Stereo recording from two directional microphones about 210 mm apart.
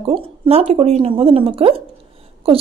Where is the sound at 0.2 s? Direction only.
30° right (ahead or behind).